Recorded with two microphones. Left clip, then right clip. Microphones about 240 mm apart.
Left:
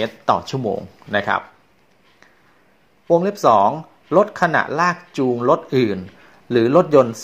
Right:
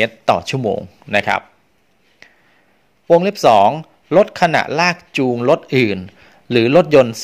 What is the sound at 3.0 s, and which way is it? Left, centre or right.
A man's voice, right.